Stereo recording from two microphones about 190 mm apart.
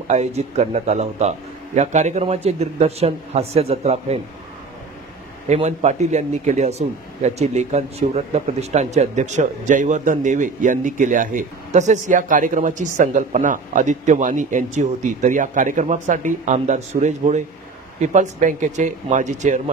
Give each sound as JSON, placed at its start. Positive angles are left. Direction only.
{"t": 0.1, "sound": "speech", "side_deg": -35}
{"t": 5.5, "sound": "speech", "side_deg": -35}